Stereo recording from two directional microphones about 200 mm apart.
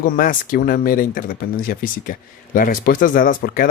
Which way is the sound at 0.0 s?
45° left (ahead or behind).